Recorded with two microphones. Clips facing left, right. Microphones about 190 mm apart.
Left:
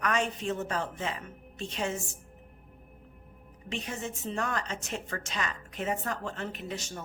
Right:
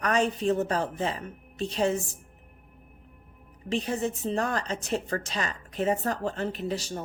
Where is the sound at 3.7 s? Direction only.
35° right (ahead or behind).